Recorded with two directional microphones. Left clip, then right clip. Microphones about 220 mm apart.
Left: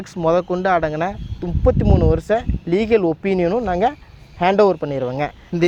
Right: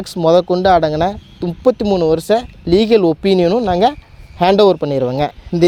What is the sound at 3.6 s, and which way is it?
Speech, 65° right (ahead or behind).